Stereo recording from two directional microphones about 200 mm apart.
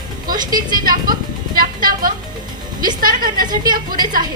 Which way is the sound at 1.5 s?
45° right (ahead or behind).